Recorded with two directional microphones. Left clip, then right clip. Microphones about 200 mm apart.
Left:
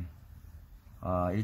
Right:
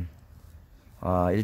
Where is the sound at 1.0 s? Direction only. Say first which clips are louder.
Right 6 dB; 50° right (ahead or behind).